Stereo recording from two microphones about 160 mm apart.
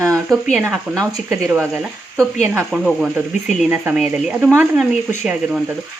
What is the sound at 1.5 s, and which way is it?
Speech, centre (ahead or behind).